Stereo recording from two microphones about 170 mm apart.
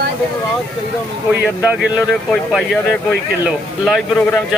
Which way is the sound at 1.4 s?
5° right (ahead or behind).